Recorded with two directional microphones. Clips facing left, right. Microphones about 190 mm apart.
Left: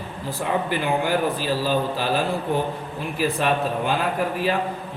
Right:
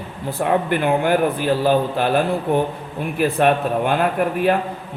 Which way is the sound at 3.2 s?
55° right (ahead or behind).